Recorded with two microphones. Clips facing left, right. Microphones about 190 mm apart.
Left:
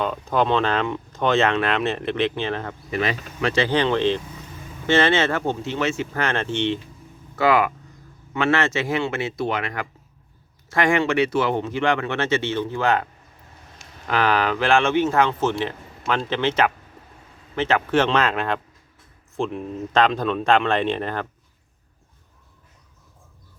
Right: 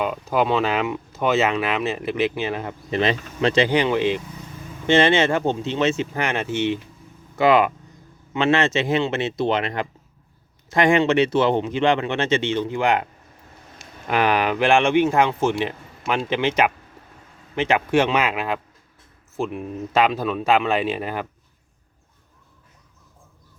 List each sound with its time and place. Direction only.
0.0 s speech: 10° right (ahead or behind)
2.9 s speech: 25° right (ahead or behind); by 6.7 s 10° right (ahead or behind)
7.3 s speech: 20° right (ahead or behind)
14.1 s speech: 15° right (ahead or behind)